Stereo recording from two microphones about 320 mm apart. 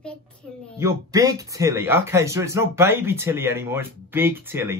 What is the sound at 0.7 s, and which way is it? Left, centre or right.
Speech, centre.